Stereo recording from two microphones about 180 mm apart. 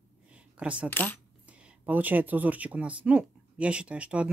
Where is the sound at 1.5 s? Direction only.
10° right (ahead or behind).